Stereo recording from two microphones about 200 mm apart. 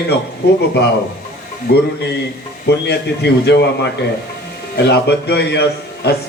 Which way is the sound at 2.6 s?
55° left (ahead or behind).